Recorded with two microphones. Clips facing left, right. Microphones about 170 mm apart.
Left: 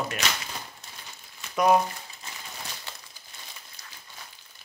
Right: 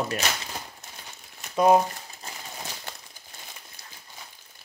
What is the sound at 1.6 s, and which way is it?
Crumpling, 30° right (ahead or behind).